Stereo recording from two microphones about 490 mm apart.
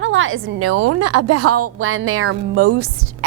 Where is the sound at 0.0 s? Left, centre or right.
Right.